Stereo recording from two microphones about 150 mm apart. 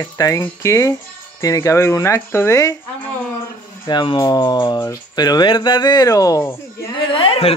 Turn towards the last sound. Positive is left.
turn(degrees=40)  # may be behind; listen again after turning